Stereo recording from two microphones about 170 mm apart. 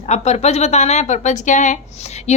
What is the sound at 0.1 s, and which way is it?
A woman's voice, 40° left (ahead or behind).